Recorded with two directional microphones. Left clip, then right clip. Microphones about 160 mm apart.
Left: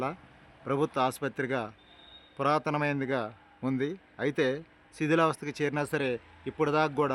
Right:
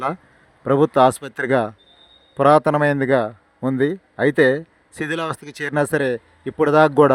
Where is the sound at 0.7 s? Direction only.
50° right (ahead or behind).